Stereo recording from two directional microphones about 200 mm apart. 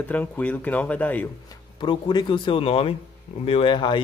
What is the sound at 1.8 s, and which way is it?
Speech, 25° left (ahead or behind).